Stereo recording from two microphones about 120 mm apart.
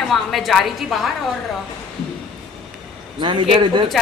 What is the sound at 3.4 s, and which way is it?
Speech, 45° right (ahead or behind).